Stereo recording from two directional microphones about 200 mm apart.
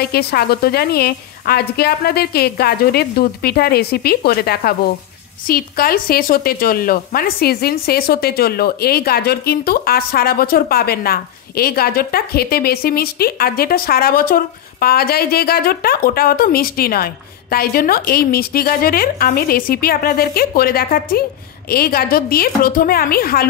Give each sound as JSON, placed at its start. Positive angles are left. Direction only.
{"t": 0.0, "sound": "a woman's voice", "side_deg": 50}